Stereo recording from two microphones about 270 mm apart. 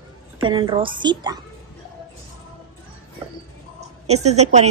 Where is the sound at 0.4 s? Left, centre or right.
Centre.